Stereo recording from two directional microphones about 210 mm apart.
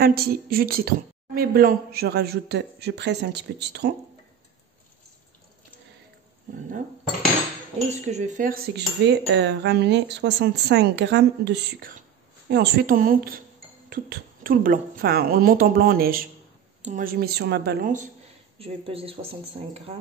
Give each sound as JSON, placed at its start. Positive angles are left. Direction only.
{"t": 0.0, "sound": "cutlery", "side_deg": -45}
{"t": 7.9, "sound": "cutlery", "side_deg": -35}
{"t": 18.6, "sound": "speech", "side_deg": -25}